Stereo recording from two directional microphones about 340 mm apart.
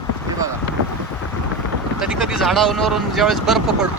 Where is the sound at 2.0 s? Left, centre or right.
Centre.